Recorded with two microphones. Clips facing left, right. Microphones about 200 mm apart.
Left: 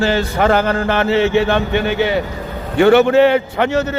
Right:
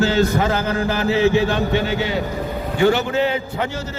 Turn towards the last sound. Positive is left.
turn(degrees=70)  # may be behind; listen again after turning